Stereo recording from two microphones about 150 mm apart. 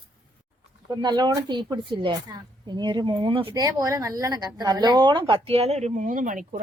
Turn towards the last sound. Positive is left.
turn(degrees=-60)  # may be behind; listen again after turning